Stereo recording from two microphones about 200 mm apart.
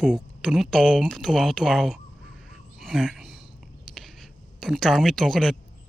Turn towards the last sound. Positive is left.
turn(degrees=0)  # may be behind; listen again after turning